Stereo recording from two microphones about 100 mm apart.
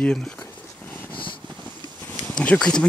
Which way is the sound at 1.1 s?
55° left (ahead or behind).